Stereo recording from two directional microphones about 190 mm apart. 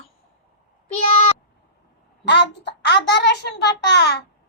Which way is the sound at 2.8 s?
65° left (ahead or behind).